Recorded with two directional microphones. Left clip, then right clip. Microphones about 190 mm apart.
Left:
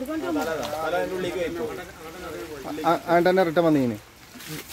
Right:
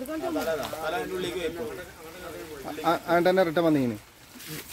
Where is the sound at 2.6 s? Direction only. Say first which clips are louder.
Left 3 dB; 15° right (ahead or behind).